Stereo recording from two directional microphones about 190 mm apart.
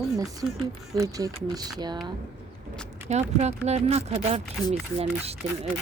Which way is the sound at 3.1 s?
35° right (ahead or behind).